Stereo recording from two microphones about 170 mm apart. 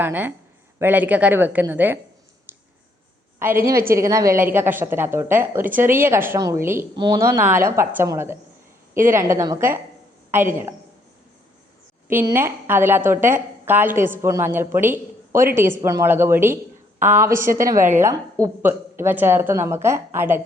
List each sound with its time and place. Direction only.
0.0 s a woman's voice: 10° right (ahead or behind)
3.3 s a woman's voice: 15° right (ahead or behind)
12.2 s a woman's voice: 15° right (ahead or behind)